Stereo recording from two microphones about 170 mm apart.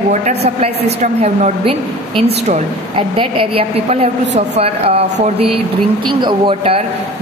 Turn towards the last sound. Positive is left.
turn(degrees=-30)  # may be behind; listen again after turning